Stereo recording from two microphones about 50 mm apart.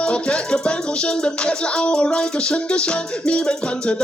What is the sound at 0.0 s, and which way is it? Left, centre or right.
Music, centre.